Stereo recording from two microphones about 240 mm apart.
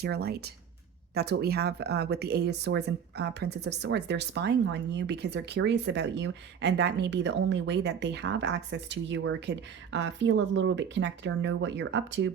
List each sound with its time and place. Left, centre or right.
0.0 s speech: right